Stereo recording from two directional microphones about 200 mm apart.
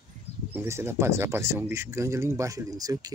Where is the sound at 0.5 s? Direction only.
15° right (ahead or behind).